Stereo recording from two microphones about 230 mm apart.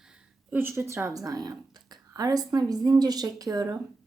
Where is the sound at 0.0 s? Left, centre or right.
Centre.